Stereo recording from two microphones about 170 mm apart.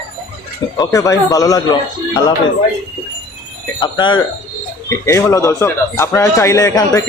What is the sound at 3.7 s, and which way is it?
Speech, 25° left (ahead or behind).